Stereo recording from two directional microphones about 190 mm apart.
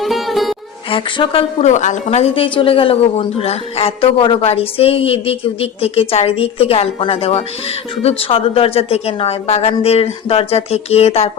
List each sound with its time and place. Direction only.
0.0 s music: centre (ahead or behind)
0.9 s a woman's voice: 25° left (ahead or behind)